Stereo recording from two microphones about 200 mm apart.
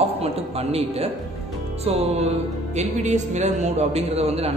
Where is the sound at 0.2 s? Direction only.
30° right (ahead or behind).